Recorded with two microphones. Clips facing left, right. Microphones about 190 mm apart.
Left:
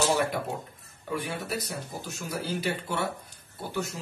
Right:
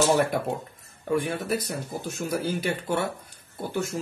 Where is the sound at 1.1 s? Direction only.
50° right (ahead or behind).